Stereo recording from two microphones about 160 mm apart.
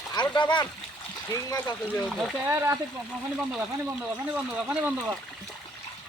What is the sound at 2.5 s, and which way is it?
Speech, 15° right (ahead or behind).